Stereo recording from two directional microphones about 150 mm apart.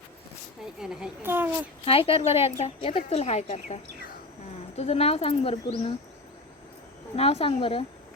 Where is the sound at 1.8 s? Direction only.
40° left (ahead or behind).